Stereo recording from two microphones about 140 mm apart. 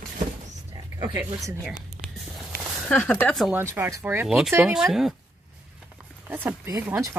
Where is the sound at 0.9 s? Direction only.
30° right (ahead or behind).